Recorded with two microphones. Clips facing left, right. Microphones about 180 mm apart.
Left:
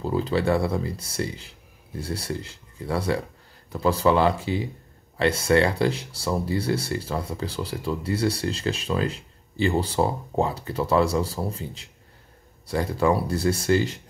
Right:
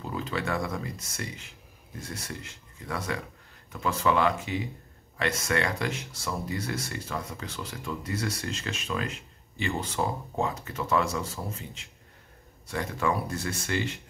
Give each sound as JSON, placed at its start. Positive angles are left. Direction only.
{"t": 0.0, "sound": "speech", "side_deg": 35}